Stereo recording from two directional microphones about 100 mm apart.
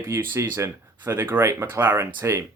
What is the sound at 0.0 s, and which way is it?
Speech, 25° right (ahead or behind).